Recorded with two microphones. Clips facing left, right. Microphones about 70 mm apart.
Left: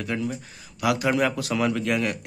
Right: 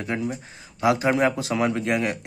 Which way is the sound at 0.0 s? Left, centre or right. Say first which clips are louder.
Right 1 dB; right.